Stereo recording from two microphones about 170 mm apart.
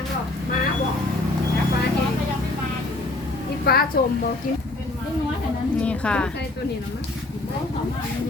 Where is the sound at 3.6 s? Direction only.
65° left (ahead or behind).